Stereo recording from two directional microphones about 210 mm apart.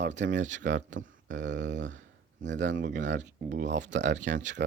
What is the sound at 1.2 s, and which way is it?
Speech, 60° right (ahead or behind).